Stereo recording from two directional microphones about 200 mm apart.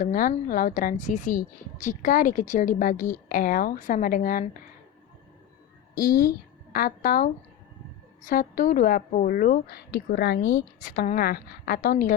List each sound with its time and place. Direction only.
0.0 s speech: 45° left (ahead or behind)
6.0 s a woman's voice: 45° left (ahead or behind)